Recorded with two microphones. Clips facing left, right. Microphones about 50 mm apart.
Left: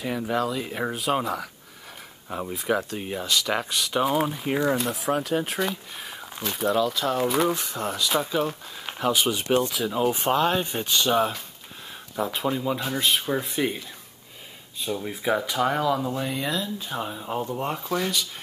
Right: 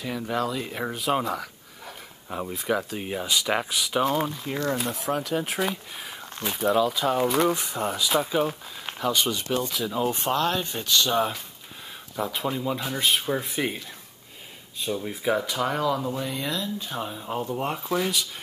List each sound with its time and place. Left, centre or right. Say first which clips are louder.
0.0 s speech: left 2 dB; centre
4.1 s speech: left 3 dB; centre
9.9 s speech: left 3 dB; centre
11.1 s speech: left 2 dB; centre